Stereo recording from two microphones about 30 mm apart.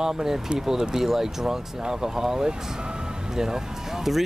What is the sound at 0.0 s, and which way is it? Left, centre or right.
Speech, centre.